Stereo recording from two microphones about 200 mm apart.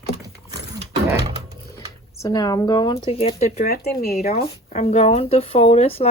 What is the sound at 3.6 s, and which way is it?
Speech, 50° left (ahead or behind).